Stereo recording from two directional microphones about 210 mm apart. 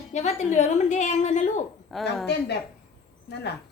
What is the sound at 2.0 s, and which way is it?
Speech, centre (ahead or behind).